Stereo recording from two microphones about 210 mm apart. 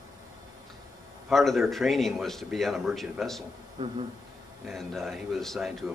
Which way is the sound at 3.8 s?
20° right (ahead or behind).